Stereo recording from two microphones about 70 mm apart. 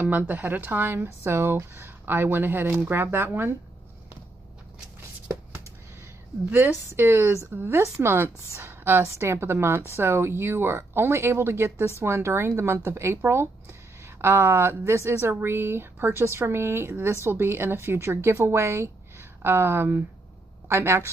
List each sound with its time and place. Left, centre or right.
0.0 s speech: right
6.5 s a woman's voice: right